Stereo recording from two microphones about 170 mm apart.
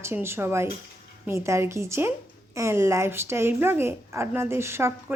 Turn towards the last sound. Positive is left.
turn(degrees=-15)  # may be behind; listen again after turning